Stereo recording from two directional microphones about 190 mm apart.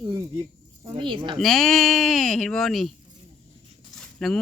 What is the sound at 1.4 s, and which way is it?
Speech, centre (ahead or behind).